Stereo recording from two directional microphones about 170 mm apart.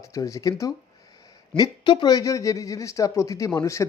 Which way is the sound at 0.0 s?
20° left (ahead or behind).